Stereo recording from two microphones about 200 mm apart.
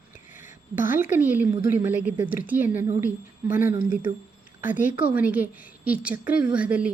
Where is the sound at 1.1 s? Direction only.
10° right (ahead or behind).